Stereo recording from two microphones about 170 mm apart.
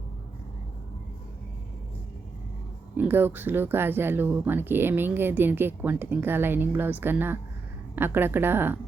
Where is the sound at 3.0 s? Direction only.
10° right (ahead or behind).